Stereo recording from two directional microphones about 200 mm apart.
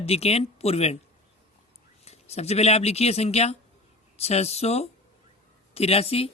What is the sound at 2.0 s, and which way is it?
A woman's voice, 30° left (ahead or behind).